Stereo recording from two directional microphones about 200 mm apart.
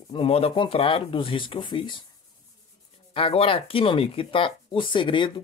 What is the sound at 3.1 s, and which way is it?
Speech, 30° left (ahead or behind).